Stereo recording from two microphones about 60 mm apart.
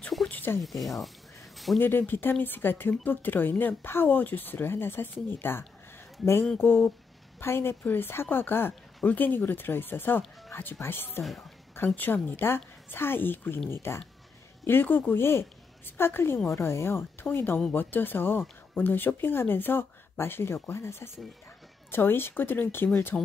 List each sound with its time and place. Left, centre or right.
0.3 s a sound: left
0.6 s speech: centre
1.8 s speech: left
6.6 s a woman's voice: left
23.1 s speech: centre